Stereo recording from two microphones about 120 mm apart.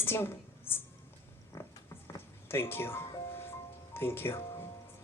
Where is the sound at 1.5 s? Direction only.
20° left (ahead or behind).